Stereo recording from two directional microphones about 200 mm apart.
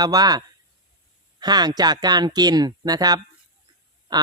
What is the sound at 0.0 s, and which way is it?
Speech, 20° right (ahead or behind).